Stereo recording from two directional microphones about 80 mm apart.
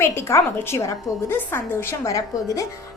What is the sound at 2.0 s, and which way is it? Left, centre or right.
Speech, left.